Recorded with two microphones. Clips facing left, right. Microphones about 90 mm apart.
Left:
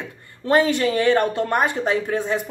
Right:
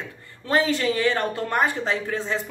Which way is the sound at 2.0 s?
20° left (ahead or behind).